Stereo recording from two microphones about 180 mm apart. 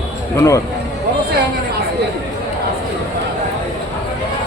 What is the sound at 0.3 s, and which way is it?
Speech, 15° left (ahead or behind).